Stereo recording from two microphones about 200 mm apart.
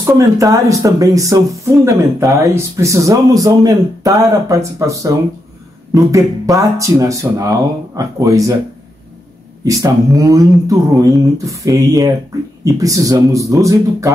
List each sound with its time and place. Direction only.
0.0 s speech: 15° right (ahead or behind)
6.1 s speech: 15° right (ahead or behind)
9.7 s speech: 15° right (ahead or behind)